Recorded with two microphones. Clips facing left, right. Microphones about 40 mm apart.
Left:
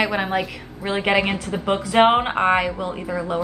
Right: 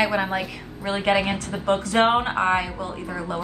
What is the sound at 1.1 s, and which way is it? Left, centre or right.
A woman's voice, left.